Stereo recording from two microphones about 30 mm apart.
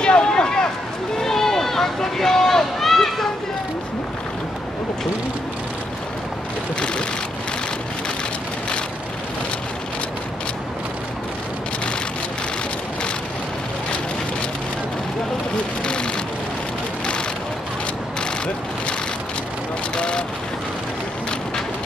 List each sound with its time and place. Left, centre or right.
0.0 s a sound: left
1.2 s run: centre
6.8 s vehicle: left
15.8 s vehicle: left
20.0 s vehicle: left